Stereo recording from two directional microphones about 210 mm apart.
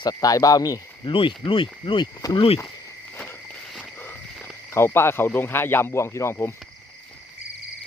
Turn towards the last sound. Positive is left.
turn(degrees=10)  # may be behind; listen again after turning